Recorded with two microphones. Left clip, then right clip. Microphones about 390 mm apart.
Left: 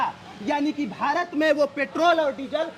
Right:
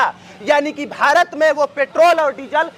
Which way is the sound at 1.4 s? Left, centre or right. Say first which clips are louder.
Right 2 dB; right.